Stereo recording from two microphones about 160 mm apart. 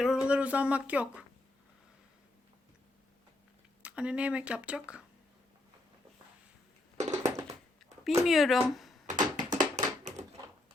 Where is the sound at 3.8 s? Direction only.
5° right (ahead or behind).